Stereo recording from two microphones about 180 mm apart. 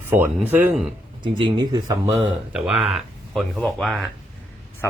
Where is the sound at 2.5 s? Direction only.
5° right (ahead or behind).